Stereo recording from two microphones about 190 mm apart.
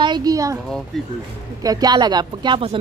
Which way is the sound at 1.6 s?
20° right (ahead or behind).